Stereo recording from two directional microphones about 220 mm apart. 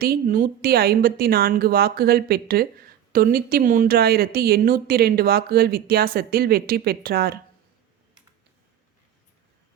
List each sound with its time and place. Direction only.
0.0 s speech: 40° right (ahead or behind)